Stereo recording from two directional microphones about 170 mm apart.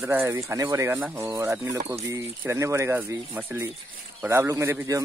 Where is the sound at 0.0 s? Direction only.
10° right (ahead or behind).